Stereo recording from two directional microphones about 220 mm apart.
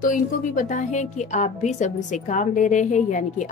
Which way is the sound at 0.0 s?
35° left (ahead or behind).